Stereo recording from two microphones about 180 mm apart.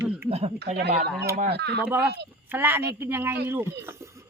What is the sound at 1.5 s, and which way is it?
Speech, 65° right (ahead or behind).